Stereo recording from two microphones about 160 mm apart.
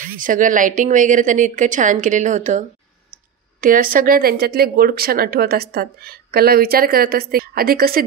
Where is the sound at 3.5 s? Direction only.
60° right (ahead or behind).